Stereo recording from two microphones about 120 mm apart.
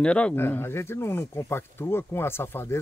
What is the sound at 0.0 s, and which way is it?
Speech, 10° left (ahead or behind).